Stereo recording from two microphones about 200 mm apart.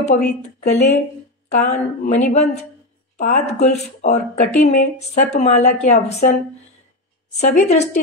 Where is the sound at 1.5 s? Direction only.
35° left (ahead or behind).